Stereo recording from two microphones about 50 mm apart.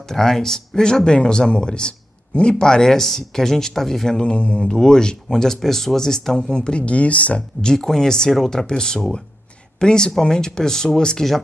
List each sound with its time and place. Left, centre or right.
0.1 s speech: centre
4.2 s speech: left
7.6 s speech: centre